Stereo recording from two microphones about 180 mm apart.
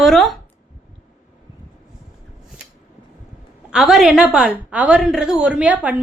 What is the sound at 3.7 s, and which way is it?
A woman's voice, 5° right (ahead or behind).